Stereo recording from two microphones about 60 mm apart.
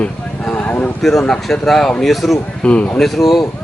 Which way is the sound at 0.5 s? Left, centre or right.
Left.